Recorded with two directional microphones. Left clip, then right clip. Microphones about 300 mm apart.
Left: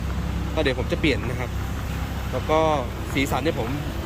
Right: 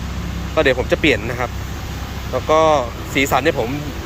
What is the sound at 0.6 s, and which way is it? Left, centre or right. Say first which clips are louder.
Speech: right 9 dB; centre.